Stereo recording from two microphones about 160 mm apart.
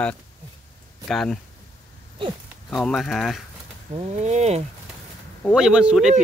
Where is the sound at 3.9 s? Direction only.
45° right (ahead or behind).